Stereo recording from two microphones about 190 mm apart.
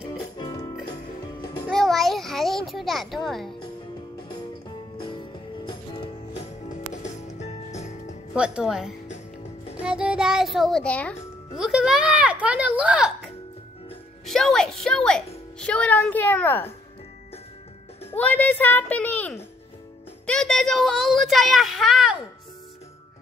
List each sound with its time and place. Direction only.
0.4 s music: 20° left (ahead or behind)
1.7 s a sound: centre (ahead or behind)
7.3 s music: 35° left (ahead or behind)
8.4 s a woman's voice: 5° right (ahead or behind)
14.2 s a woman's voice: centre (ahead or behind)
18.1 s a woman's voice: 10° left (ahead or behind)